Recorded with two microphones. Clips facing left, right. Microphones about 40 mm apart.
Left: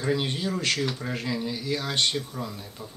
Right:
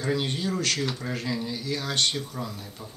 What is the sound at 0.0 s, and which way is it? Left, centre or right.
Speech, centre.